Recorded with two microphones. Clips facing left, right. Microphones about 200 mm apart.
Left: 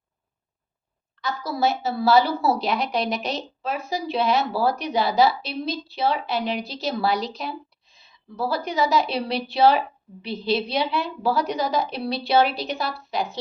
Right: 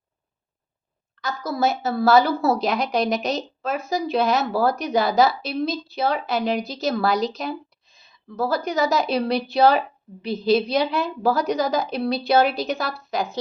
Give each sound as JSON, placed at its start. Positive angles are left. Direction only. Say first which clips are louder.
{"t": 1.2, "sound": "a woman's voice", "louder": "right 1 dB", "side_deg": -45}